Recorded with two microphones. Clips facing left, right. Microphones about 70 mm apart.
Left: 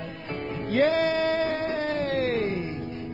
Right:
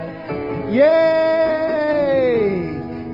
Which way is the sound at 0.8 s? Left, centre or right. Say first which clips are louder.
Right 11 dB; right.